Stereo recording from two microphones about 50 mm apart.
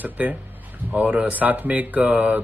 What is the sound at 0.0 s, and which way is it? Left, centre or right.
Speech, right.